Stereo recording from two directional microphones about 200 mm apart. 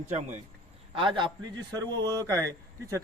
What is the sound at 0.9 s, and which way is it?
A man's voice, 25° right (ahead or behind).